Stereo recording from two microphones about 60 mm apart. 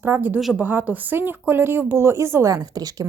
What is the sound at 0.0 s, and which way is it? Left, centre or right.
Speech, right.